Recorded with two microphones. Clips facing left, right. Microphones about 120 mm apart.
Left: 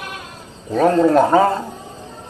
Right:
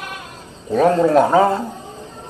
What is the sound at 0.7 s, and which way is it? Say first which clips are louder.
Speech: even; 10° right (ahead or behind).